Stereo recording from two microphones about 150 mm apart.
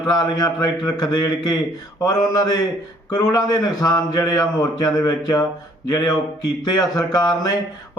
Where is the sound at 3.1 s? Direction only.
25° left (ahead or behind).